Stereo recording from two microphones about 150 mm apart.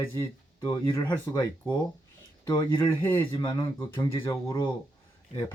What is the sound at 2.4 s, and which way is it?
Speech, 30° left (ahead or behind).